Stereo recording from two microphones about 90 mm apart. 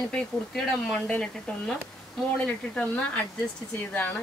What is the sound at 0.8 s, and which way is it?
Speech, 10° left (ahead or behind).